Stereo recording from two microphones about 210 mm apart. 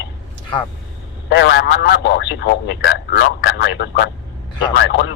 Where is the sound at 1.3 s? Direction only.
55° left (ahead or behind).